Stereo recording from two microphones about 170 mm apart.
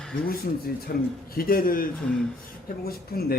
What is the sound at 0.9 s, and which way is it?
Speech, 65° left (ahead or behind).